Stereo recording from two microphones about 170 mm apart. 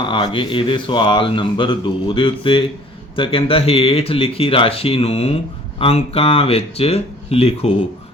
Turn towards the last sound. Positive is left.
turn(degrees=35)  # may be behind; listen again after turning